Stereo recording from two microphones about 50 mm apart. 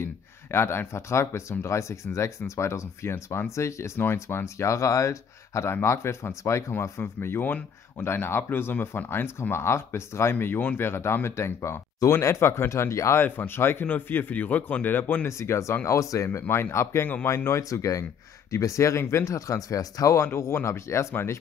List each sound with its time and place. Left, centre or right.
0.0 s speech: left
4.0 s speech: left
4.6 s speech: left
7.0 s speech: left
10.4 s speech: left
10.8 s speech: left
11.2 s speech: left
13.2 s speech: left
15.2 s speech: left
15.8 s speech: left
16.3 s speech: left
20.5 s speech: left
21.1 s speech: left